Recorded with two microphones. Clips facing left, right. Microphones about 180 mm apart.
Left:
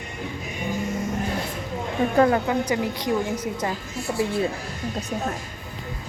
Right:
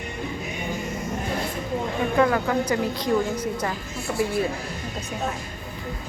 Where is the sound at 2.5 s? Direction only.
15° left (ahead or behind).